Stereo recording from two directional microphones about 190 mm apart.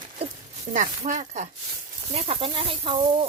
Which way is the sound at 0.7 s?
40° right (ahead or behind).